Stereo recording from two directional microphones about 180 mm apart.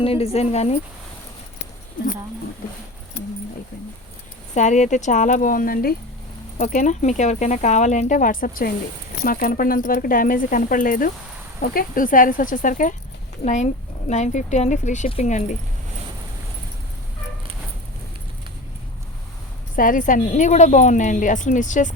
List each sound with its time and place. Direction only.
0.0 s speech: 35° left (ahead or behind)
4.5 s a woman's voice: 40° left (ahead or behind)
19.7 s a woman's voice: 50° left (ahead or behind)